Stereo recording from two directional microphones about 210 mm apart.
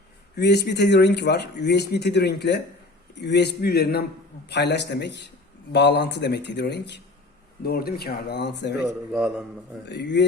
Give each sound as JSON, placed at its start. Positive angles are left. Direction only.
{"t": 0.3, "sound": "speech", "side_deg": 50}
{"t": 9.9, "sound": "speech", "side_deg": 55}